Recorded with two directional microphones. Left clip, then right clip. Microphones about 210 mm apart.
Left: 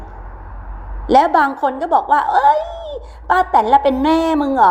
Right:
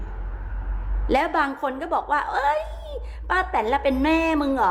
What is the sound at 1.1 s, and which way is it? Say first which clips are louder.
A woman's voice: left 10 dB; 10° left (ahead or behind).